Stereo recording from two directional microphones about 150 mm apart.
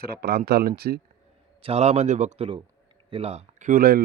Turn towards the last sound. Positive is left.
turn(degrees=-75)  # may be behind; listen again after turning